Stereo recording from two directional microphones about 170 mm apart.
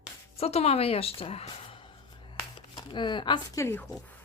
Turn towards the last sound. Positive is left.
turn(degrees=10)  # may be behind; listen again after turning